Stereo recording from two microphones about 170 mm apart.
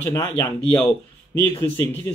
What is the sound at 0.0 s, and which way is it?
Speech, 15° left (ahead or behind).